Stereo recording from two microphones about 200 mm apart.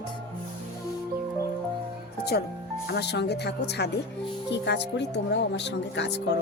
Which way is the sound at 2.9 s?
55° left (ahead or behind).